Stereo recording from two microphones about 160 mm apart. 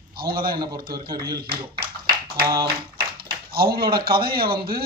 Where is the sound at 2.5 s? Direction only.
30° right (ahead or behind).